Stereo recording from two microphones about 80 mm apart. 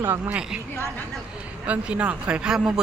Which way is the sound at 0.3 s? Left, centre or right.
Centre.